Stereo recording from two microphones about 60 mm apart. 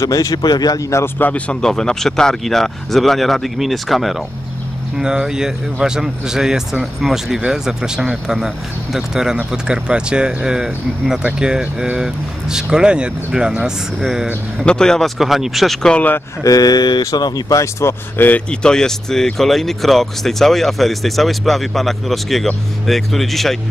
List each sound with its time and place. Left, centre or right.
0.0 s speech: left
1.0 s speech: left
1.5 s speech: centre
14.6 s speech: centre
16.4 s speech: left
18.5 s speech: centre